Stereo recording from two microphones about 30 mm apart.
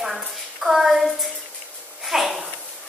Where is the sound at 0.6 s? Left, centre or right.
Centre.